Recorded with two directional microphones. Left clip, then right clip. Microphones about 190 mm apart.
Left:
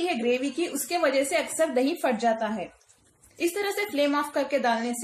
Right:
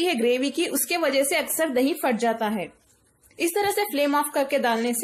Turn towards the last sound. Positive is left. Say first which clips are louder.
# right 2 dB
turn(degrees=-45)  # may be behind; listen again after turning